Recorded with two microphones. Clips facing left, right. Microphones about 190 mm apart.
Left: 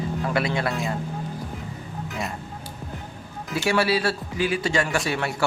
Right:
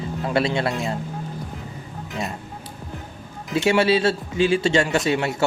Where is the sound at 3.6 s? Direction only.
25° right (ahead or behind).